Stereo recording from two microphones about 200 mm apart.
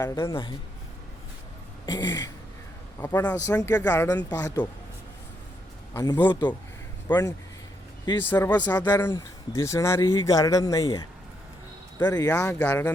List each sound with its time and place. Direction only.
0.0 s speech: 15° left (ahead or behind)
1.9 s throat clearing: 20° left (ahead or behind)
3.0 s speech: 10° left (ahead or behind)
4.3 s throat clearing: 20° left (ahead or behind)
5.9 s speech: 15° left (ahead or behind)